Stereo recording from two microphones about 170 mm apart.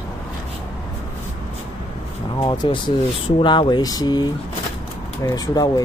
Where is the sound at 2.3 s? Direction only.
30° left (ahead or behind).